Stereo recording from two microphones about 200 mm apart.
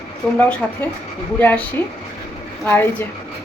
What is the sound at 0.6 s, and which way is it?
Speech, 10° left (ahead or behind).